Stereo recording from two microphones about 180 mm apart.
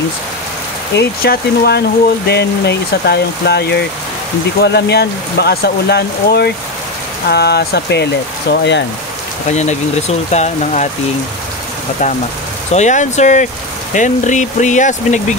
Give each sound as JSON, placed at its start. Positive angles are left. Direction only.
{"t": 0.9, "sound": "speech", "side_deg": 60}
{"t": 9.5, "sound": "speech", "side_deg": 40}
{"t": 12.7, "sound": "speech", "side_deg": 40}